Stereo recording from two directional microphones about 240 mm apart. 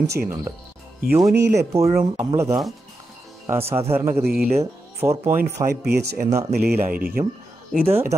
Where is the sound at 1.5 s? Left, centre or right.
Centre.